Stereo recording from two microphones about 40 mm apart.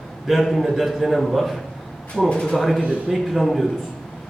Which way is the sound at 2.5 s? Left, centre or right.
Centre.